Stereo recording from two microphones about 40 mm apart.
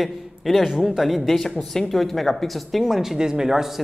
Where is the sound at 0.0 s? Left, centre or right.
Centre.